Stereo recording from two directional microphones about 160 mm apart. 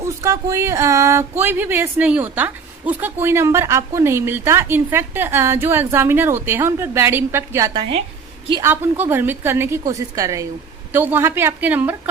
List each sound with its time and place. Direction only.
0.0 s speech: 20° right (ahead or behind)
7.7 s speech: 35° right (ahead or behind)
8.6 s speech: 15° right (ahead or behind)